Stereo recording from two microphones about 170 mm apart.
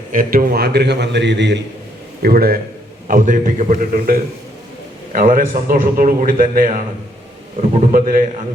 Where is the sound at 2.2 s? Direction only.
65° right (ahead or behind).